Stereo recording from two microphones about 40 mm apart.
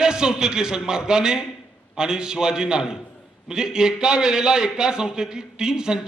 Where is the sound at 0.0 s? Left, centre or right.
Centre.